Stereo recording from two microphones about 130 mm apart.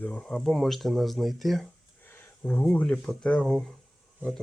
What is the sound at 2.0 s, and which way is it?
Speech, 15° left (ahead or behind).